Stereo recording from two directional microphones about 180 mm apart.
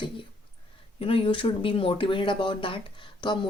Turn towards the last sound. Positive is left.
turn(degrees=25)  # may be behind; listen again after turning